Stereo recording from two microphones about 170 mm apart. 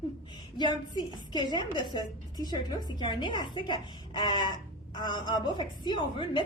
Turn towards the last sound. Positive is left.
turn(degrees=30)  # may be behind; listen again after turning